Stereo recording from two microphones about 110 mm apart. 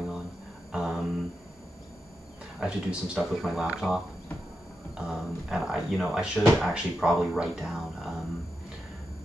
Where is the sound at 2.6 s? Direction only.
5° right (ahead or behind).